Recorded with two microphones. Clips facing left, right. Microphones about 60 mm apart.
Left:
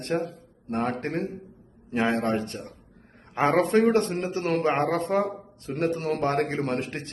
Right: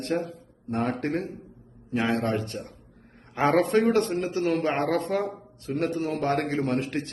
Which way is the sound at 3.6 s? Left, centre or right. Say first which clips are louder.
Left 3 dB; left.